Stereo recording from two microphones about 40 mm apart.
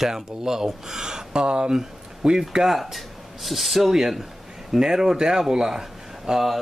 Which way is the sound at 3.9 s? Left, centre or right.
Centre.